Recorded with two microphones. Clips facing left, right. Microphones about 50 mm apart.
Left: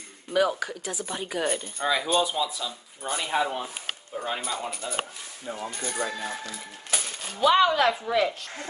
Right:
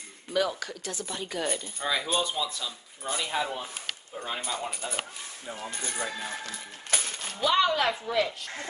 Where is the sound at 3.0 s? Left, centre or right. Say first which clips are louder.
Left 4 dB; left.